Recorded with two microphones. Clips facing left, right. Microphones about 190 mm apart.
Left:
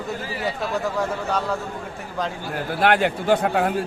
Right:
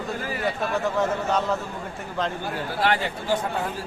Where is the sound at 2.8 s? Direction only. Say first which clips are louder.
Left 6 dB; 60° left (ahead or behind).